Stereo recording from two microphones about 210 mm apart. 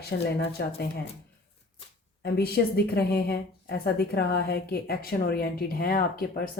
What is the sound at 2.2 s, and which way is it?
A woman's voice, 45° left (ahead or behind).